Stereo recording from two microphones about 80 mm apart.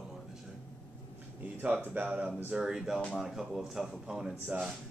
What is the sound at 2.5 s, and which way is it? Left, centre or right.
Speech, centre.